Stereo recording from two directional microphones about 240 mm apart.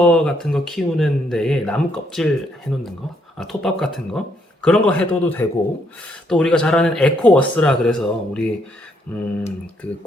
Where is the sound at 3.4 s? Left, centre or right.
Centre.